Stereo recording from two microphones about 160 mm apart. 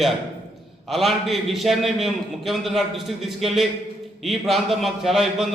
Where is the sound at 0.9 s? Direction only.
Centre (ahead or behind).